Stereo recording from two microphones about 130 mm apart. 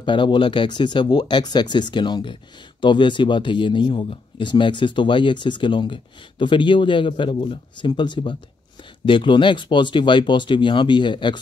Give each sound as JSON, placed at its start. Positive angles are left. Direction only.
{"t": 0.0, "sound": "speech", "side_deg": 40}